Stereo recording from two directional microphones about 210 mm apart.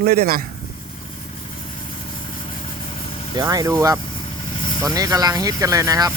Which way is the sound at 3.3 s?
15° right (ahead or behind).